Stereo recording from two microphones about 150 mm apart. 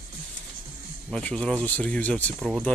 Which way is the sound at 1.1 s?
5° left (ahead or behind).